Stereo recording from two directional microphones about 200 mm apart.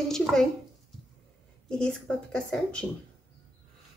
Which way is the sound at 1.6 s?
5° left (ahead or behind).